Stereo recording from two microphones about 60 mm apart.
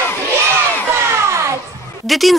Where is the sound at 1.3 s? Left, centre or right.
Right.